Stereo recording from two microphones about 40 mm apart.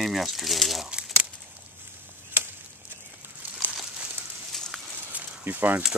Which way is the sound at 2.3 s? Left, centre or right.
Right.